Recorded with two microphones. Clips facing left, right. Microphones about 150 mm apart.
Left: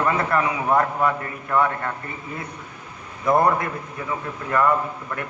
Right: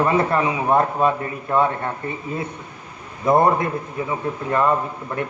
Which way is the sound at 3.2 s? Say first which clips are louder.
Right 2 dB; 25° right (ahead or behind).